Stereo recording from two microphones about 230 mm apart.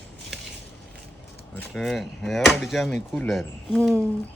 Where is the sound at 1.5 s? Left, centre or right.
Centre.